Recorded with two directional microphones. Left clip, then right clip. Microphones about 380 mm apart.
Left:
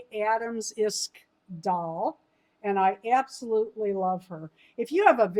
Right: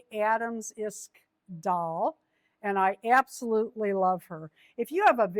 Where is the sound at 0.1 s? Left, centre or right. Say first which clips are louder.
Even; right.